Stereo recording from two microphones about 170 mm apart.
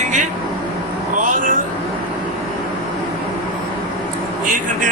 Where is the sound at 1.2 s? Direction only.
50° right (ahead or behind).